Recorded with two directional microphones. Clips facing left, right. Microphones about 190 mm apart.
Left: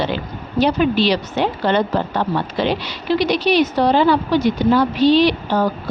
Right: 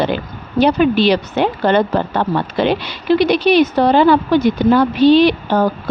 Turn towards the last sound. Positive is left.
turn(degrees=-55)  # may be behind; listen again after turning